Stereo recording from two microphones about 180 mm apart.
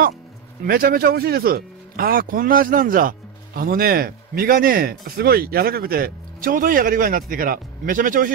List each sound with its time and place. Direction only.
0.7 s speech: 55° right (ahead or behind)